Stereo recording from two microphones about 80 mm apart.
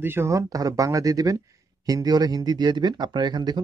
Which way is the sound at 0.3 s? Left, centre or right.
Right.